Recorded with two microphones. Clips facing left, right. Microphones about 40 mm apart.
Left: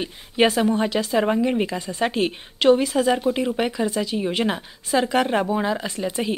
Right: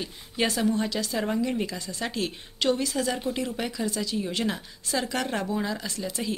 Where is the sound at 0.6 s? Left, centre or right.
Left.